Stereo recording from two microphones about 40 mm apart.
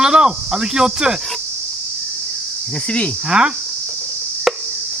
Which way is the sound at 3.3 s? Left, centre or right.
Right.